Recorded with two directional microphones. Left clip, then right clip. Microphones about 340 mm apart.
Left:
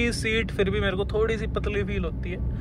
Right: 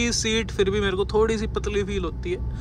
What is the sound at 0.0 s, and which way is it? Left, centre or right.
Speech, centre.